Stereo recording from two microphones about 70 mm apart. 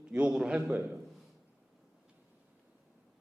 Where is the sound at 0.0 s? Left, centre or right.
Centre.